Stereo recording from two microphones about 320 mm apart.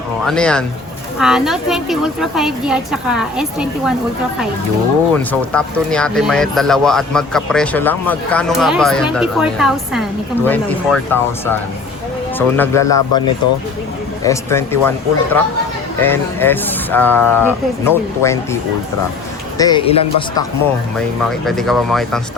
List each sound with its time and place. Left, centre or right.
0.3 s speech: centre
5.1 s speech: centre
14.3 s speech: centre
19.5 s speech: centre
21.2 s speech: centre